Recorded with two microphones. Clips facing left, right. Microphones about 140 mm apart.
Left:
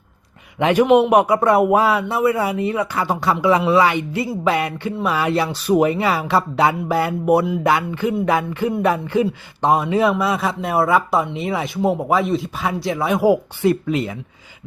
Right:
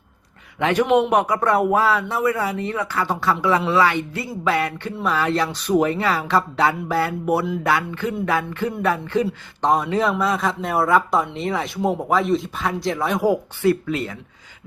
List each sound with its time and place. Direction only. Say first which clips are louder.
0.6 s a man's voice: left 4 dB; 10° left (ahead or behind)
13.6 s speech: left 2 dB; 20° left (ahead or behind)